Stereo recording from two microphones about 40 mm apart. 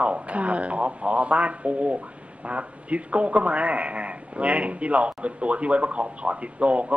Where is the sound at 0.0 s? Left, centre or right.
Right.